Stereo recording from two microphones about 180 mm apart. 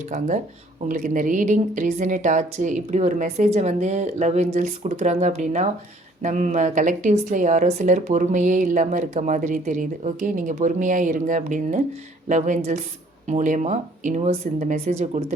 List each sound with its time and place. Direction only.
0.1 s a woman's voice: 45° right (ahead or behind)